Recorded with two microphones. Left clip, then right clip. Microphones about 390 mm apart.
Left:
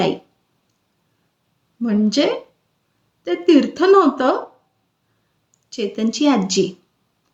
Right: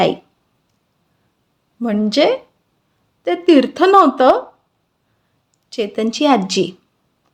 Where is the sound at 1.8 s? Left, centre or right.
Right.